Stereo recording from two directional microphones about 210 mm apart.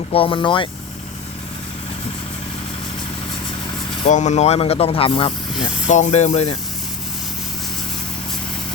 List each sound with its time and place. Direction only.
0.1 s speech: 25° left (ahead or behind)
4.0 s speech: 35° left (ahead or behind)